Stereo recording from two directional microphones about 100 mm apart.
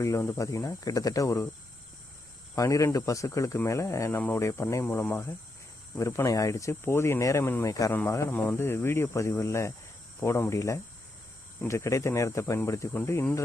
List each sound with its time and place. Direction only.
0.0 s speech: 30° left (ahead or behind)
2.6 s speech: 35° left (ahead or behind)
8.3 s speech: 15° left (ahead or behind)
8.5 s speech: 25° left (ahead or behind)